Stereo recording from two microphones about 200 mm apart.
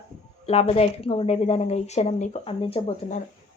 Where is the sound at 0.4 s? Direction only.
30° left (ahead or behind).